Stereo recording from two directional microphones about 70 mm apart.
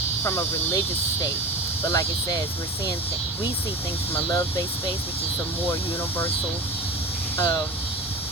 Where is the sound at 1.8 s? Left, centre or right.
Left.